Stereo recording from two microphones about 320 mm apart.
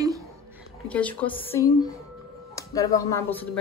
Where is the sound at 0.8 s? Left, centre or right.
Centre.